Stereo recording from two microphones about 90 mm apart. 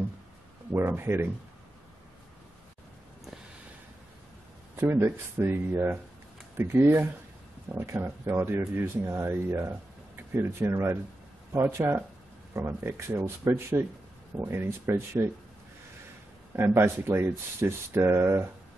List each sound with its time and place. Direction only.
0.7 s speech: 25° right (ahead or behind)
4.7 s speech: 30° right (ahead or behind)
16.5 s speech: 30° right (ahead or behind)